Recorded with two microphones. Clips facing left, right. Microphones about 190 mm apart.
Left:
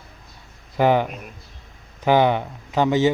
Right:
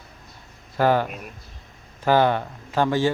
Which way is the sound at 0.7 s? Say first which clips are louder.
Left 2 dB; 15° left (ahead or behind).